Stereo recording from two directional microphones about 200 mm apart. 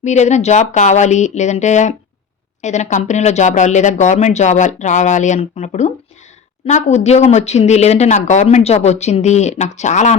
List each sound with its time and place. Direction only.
0.0 s speech: 35° left (ahead or behind)